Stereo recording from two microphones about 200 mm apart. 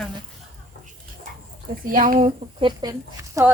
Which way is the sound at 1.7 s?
45° right (ahead or behind).